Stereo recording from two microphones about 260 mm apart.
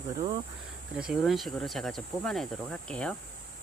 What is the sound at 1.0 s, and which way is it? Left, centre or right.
Speech, centre.